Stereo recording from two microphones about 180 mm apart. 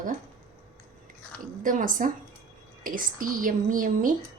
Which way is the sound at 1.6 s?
45° right (ahead or behind).